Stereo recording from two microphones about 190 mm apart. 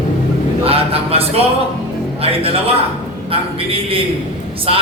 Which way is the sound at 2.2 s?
30° right (ahead or behind).